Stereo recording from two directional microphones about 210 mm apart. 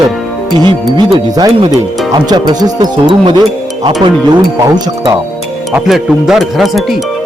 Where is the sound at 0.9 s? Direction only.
20° right (ahead or behind).